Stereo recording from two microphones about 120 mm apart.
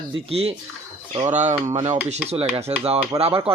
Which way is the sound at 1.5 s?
25° right (ahead or behind).